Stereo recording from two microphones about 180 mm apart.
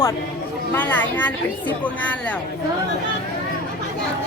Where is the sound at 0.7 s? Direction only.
10° left (ahead or behind).